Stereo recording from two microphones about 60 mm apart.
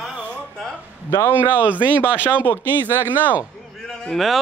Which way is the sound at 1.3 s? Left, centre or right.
Right.